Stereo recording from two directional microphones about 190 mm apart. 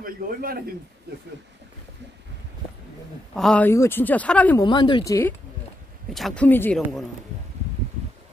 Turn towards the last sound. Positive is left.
turn(degrees=10)  # may be behind; listen again after turning